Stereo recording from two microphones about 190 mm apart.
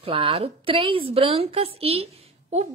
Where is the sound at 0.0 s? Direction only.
30° right (ahead or behind).